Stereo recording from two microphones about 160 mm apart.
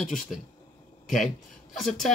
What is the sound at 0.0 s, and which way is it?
Speech, centre (ahead or behind).